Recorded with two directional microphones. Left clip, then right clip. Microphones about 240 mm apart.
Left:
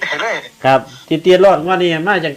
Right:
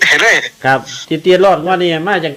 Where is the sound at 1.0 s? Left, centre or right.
Centre.